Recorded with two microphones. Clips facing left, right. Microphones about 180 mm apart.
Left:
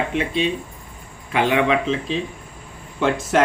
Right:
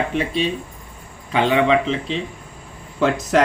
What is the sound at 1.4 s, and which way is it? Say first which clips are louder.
Speech: right 2 dB; 30° right (ahead or behind).